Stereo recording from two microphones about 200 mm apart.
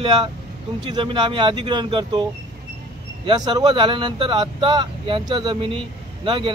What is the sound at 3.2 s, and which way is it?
Speech, 20° right (ahead or behind).